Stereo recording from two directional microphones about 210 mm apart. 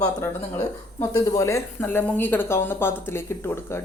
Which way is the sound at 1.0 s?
15° left (ahead or behind).